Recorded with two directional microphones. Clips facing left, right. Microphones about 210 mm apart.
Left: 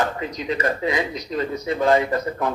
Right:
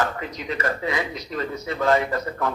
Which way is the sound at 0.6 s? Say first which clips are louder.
Left 2 dB; 15° left (ahead or behind).